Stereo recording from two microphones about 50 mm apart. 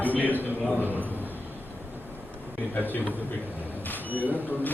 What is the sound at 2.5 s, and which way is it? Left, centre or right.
Speech, left.